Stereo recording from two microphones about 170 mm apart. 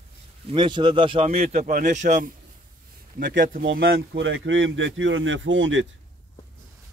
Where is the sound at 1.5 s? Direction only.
55° right (ahead or behind).